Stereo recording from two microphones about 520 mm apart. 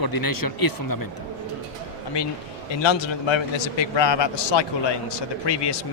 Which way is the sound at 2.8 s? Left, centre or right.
Left.